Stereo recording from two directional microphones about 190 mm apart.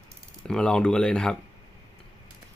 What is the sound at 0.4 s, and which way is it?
Speech, 5° left (ahead or behind).